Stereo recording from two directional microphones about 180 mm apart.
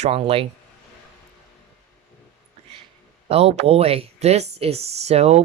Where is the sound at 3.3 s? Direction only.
35° right (ahead or behind).